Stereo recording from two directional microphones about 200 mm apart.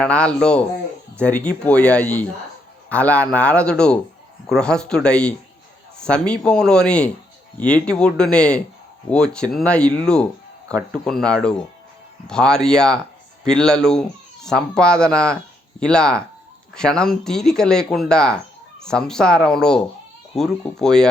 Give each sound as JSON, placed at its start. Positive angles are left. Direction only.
{"t": 0.0, "sound": "speech", "side_deg": 5}